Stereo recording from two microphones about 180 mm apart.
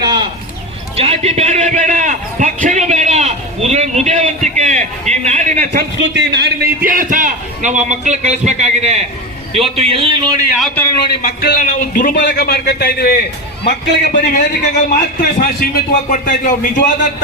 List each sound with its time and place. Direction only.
0.0 s a sound: 25° right (ahead or behind)
0.9 s a sound: 35° right (ahead or behind)
6.0 s a man's voice: 75° right (ahead or behind); by 10.4 s 25° right (ahead or behind)
10.8 s a man's voice: 15° left (ahead or behind)
11.1 s a man's voice: 60° left (ahead or behind)
11.6 s a man's voice: 50° left (ahead or behind)
12.1 s a man's voice: 65° left (ahead or behind)
14.1 s a man's voice: 45° left (ahead or behind)